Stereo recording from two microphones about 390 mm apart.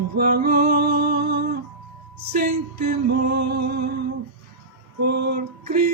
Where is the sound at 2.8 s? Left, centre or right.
Right.